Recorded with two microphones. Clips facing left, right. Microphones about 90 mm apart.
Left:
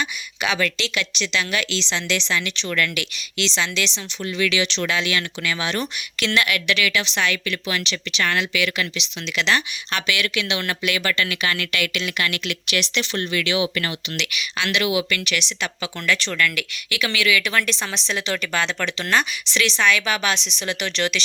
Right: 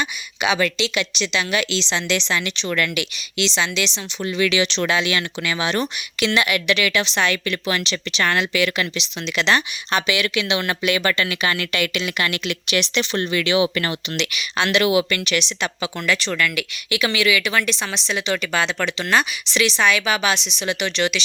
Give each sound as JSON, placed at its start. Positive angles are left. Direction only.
{"t": 0.4, "sound": "a woman's voice", "side_deg": -15}
{"t": 15.2, "sound": "a woman's voice", "side_deg": -25}